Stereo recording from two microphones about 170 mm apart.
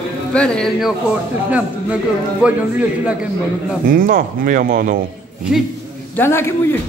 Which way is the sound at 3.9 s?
55° right (ahead or behind).